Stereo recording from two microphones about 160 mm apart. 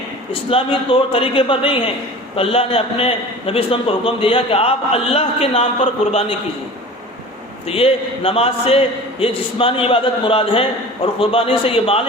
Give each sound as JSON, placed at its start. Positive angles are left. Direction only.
{"t": 0.5, "sound": "a man's voice", "side_deg": 35}
{"t": 7.7, "sound": "a man's voice", "side_deg": 40}